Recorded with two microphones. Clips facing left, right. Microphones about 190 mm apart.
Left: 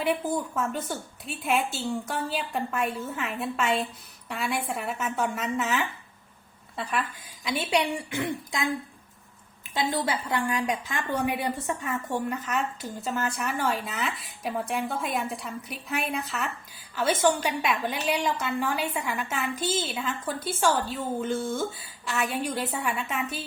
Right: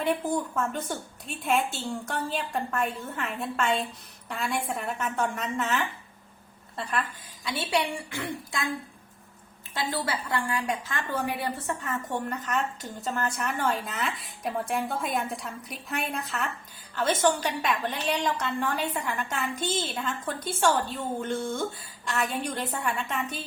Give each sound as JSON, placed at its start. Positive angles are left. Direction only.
{"t": 0.0, "sound": "a woman's voice", "side_deg": 5}
{"t": 7.4, "sound": "a woman's voice", "side_deg": 15}
{"t": 9.7, "sound": "a woman's voice", "side_deg": 20}